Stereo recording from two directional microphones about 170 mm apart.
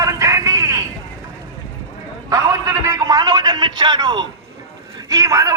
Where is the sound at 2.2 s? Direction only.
20° right (ahead or behind).